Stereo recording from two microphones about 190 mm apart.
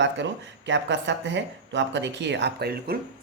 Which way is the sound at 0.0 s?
70° right (ahead or behind).